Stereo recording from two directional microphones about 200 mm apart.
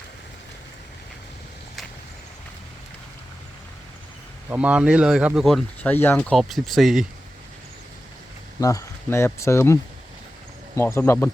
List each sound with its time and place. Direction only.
4.4 s speech: 5° right (ahead or behind)
8.6 s speech: 15° left (ahead or behind)
10.8 s speech: 15° left (ahead or behind)